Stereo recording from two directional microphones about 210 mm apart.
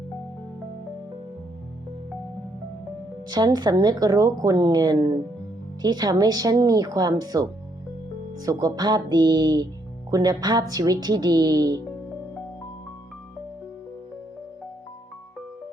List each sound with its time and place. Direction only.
3.2 s a woman's voice: 20° right (ahead or behind)
8.4 s speech: 15° right (ahead or behind)